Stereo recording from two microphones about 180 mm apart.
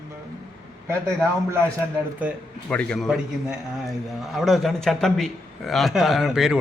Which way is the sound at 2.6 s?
5° left (ahead or behind).